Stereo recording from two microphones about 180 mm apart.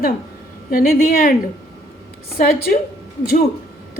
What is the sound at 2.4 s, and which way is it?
Speech, 55° left (ahead or behind).